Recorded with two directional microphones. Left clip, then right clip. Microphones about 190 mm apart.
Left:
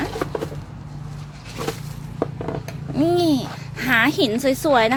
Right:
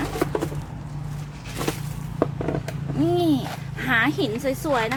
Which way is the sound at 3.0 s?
40° left (ahead or behind).